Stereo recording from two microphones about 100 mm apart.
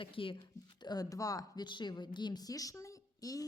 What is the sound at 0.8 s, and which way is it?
Speech, 40° left (ahead or behind).